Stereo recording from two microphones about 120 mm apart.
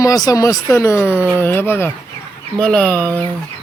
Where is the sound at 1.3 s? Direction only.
20° left (ahead or behind).